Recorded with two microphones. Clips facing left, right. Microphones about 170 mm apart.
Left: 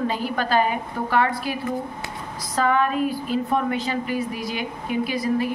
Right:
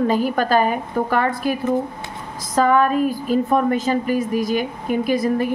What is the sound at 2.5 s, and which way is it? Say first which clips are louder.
A woman's voice: right 5 dB; 45° right (ahead or behind).